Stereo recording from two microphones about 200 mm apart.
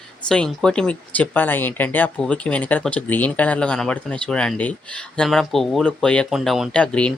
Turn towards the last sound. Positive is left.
turn(degrees=5)  # may be behind; listen again after turning